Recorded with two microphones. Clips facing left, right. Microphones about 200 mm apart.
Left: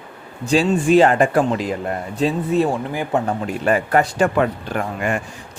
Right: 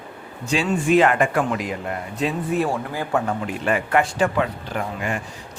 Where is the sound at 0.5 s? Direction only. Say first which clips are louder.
Left 4 dB; 35° left (ahead or behind); by 3.2 s 20° left (ahead or behind).